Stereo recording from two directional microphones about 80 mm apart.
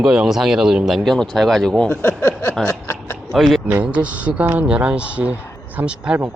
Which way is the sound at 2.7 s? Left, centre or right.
Left.